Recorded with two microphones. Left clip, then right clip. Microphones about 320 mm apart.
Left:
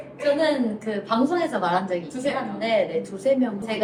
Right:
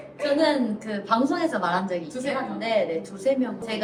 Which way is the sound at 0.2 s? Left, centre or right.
Centre.